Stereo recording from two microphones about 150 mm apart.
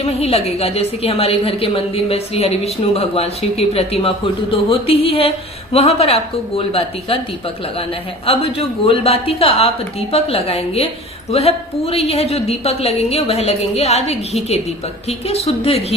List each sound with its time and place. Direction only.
0.0 s a woman's voice: 40° left (ahead or behind)
8.3 s a woman's voice: 40° left (ahead or behind)